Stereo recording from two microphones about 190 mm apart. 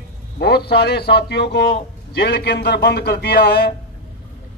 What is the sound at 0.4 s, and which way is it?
A man's voice, 60° left (ahead or behind).